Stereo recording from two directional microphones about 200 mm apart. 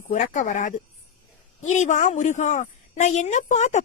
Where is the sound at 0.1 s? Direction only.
40° left (ahead or behind).